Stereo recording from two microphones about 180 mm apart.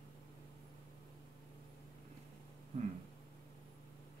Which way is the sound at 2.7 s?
40° right (ahead or behind).